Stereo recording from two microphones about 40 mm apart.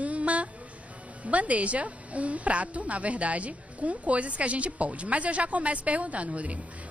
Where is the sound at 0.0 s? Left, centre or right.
Right.